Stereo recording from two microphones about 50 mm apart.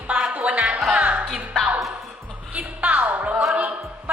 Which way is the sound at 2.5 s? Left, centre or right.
Right.